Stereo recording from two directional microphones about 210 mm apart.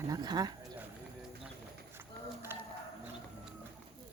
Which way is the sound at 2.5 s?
10° right (ahead or behind).